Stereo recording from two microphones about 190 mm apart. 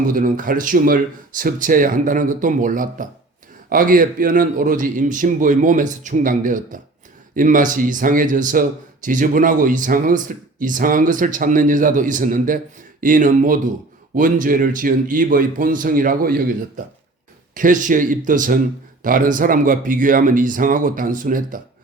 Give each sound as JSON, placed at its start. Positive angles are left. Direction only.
{"t": 0.1, "sound": "speech", "side_deg": -45}